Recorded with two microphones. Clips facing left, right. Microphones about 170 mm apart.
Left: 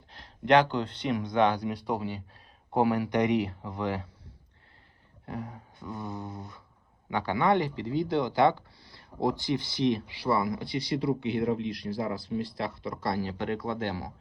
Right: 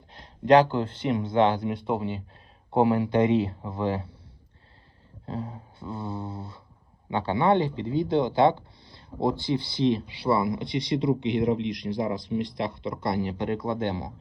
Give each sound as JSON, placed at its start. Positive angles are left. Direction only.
{"t": 0.1, "sound": "speech", "side_deg": -25}
{"t": 5.2, "sound": "mantra", "side_deg": -25}
{"t": 7.1, "sound": "speech", "side_deg": -25}